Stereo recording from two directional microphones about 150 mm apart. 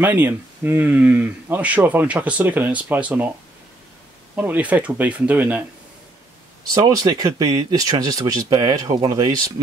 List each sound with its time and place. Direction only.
0.0 s speech: 15° right (ahead or behind)
4.4 s speech: 10° right (ahead or behind)
6.7 s speech: 25° right (ahead or behind)